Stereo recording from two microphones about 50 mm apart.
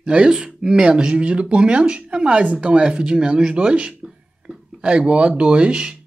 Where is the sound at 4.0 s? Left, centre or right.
Centre.